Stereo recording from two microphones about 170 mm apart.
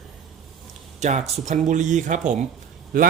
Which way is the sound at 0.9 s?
45° right (ahead or behind).